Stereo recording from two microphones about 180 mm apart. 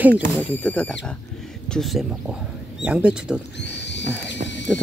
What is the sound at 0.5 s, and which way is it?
Speech, 10° left (ahead or behind).